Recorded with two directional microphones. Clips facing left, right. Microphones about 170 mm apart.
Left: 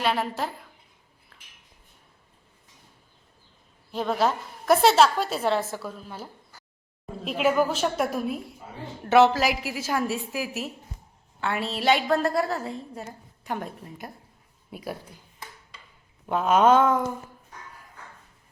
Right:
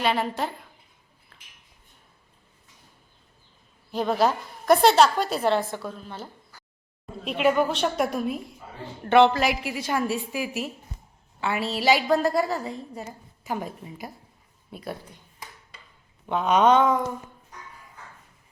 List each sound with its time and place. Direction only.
0.0 s a woman's voice: centre (ahead or behind)
1.3 s cutlery: 5° left (ahead or behind)
3.9 s a woman's voice: centre (ahead or behind)
7.3 s a woman's voice: centre (ahead or behind)
16.2 s a woman's voice: 5° left (ahead or behind)